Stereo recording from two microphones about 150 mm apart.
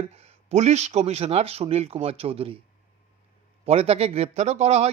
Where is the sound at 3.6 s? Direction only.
40° right (ahead or behind).